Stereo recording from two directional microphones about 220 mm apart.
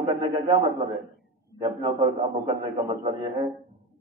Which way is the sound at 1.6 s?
20° right (ahead or behind).